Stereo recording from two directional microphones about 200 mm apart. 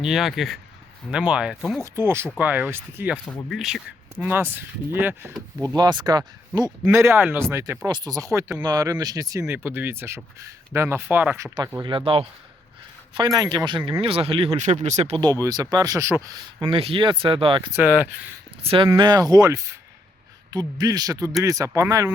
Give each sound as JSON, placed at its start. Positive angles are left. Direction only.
{"t": 0.0, "sound": "speech", "side_deg": 0}
{"t": 5.6, "sound": "speech", "side_deg": -20}
{"t": 6.7, "sound": "speech", "side_deg": -10}
{"t": 11.5, "sound": "speech", "side_deg": -20}
{"t": 15.2, "sound": "speech", "side_deg": -20}
{"t": 17.7, "sound": "speech", "side_deg": -10}
{"t": 18.6, "sound": "speech", "side_deg": -30}